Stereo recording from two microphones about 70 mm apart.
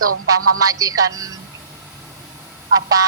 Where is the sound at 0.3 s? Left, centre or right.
Right.